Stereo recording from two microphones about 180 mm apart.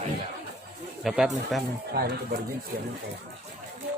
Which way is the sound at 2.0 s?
65° right (ahead or behind).